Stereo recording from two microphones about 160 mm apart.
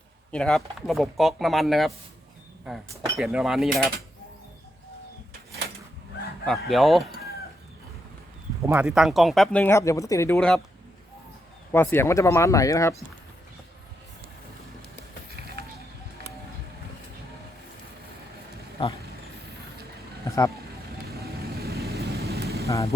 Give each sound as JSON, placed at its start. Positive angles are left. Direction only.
{"t": 0.3, "sound": "speech", "side_deg": 5}
{"t": 3.2, "sound": "speech", "side_deg": 0}
{"t": 6.7, "sound": "speech", "side_deg": 0}
{"t": 8.6, "sound": "speech", "side_deg": -10}
{"t": 11.7, "sound": "speech", "side_deg": 15}
{"t": 15.3, "sound": "music", "side_deg": -85}
{"t": 18.8, "sound": "speech", "side_deg": 35}
{"t": 20.2, "sound": "vehicle", "side_deg": 20}
{"t": 21.1, "sound": "vehicle", "side_deg": -75}
{"t": 22.6, "sound": "speech", "side_deg": 20}